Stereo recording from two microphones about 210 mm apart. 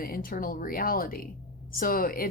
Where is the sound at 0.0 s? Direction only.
45° left (ahead or behind).